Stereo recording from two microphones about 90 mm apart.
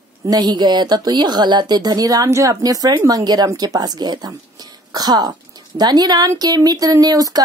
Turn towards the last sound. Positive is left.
turn(degrees=-45)  # may be behind; listen again after turning